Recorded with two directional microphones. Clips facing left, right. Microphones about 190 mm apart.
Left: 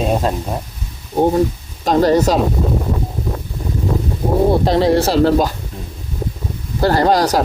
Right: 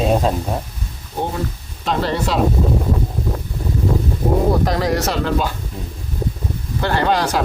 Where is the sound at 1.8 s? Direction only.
40° left (ahead or behind).